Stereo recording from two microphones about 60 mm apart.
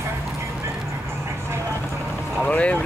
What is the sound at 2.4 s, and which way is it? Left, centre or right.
Boat, left.